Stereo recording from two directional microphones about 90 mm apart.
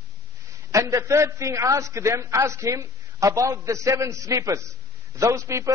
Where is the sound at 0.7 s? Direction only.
35° right (ahead or behind).